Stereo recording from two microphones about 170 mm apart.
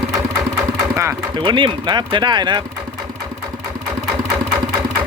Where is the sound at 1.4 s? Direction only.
30° right (ahead or behind).